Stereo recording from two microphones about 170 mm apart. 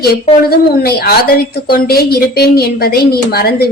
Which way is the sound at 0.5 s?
65° left (ahead or behind).